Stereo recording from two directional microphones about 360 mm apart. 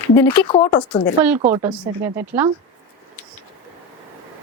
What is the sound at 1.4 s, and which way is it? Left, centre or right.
Speech, centre.